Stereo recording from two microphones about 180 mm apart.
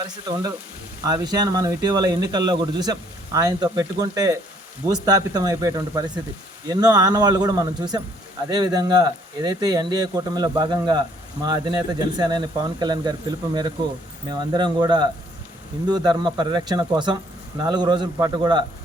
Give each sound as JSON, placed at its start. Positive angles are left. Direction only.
{"t": 1.0, "sound": "speech", "side_deg": -25}